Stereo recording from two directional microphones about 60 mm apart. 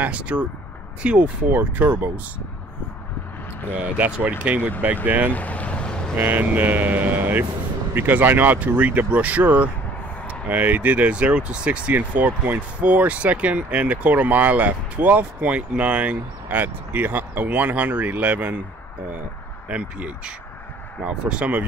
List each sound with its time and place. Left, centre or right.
0.0 s speech: centre
3.9 s speech: right
5.3 s boat: left
6.1 s speech: right
19.7 s speech: right